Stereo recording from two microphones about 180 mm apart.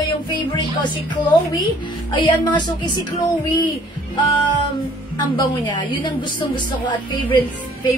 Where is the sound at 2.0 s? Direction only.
25° left (ahead or behind).